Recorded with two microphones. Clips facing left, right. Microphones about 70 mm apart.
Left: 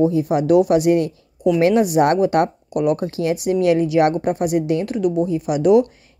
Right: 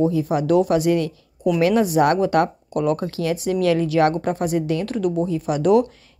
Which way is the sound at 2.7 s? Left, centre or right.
Centre.